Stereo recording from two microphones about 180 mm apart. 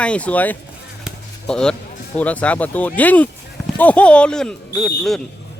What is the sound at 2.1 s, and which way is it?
Speech, 5° left (ahead or behind).